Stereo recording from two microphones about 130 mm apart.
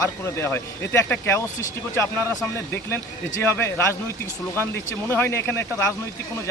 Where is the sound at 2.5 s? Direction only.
20° left (ahead or behind).